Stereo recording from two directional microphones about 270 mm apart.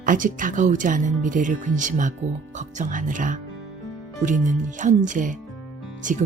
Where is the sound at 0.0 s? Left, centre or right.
Right.